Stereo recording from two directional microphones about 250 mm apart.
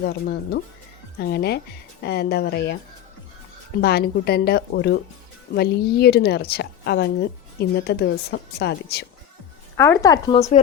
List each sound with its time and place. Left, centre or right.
0.0 s a woman's voice: left
3.8 s a woman's voice: left
9.7 s speech: centre